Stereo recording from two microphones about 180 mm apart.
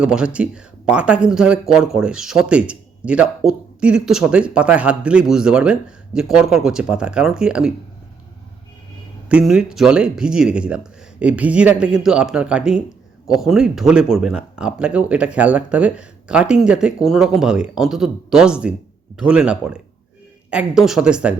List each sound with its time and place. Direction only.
0.0 s speech: 5° right (ahead or behind)
9.3 s speech: centre (ahead or behind)